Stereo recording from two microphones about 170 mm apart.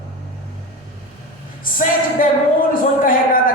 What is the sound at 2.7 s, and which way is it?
Speech, 55° left (ahead or behind).